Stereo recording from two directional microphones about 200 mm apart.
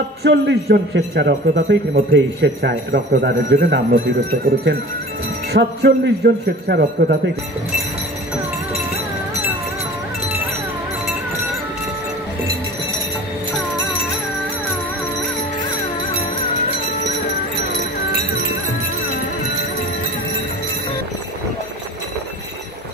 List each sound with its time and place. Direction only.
0.2 s speech: 55° right (ahead or behind)
5.5 s a man's voice: 60° right (ahead or behind)